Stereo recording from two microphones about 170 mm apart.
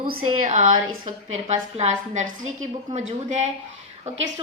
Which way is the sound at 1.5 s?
40° right (ahead or behind).